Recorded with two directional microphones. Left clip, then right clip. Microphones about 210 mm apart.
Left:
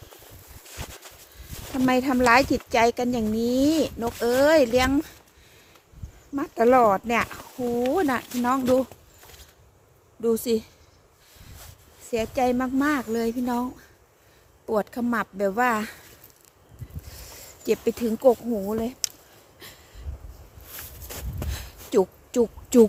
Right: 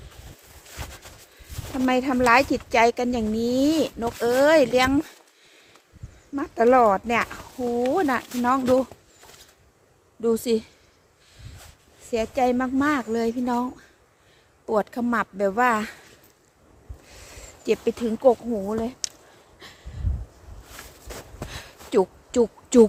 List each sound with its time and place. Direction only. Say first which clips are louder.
0.7 s a sound: even; 15° left (ahead or behind)
1.7 s speech: even; 15° left (ahead or behind); by 5.1 s centre (ahead or behind)
6.3 s speech: right 1 dB; 10° left (ahead or behind)
10.2 s speech: right 1 dB; 5° right (ahead or behind)
12.1 s speech: right 1 dB; centre (ahead or behind)
17.1 s speech: right 1 dB; centre (ahead or behind)
19.5 s a sound: right 1 dB; 10° left (ahead or behind)